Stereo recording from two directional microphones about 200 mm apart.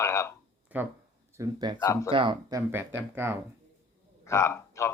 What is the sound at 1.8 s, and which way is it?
Speech, 15° left (ahead or behind).